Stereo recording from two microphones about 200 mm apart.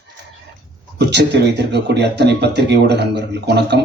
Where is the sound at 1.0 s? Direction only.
60° right (ahead or behind).